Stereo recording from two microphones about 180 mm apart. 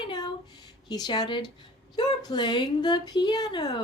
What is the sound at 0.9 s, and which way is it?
Speech, 25° left (ahead or behind).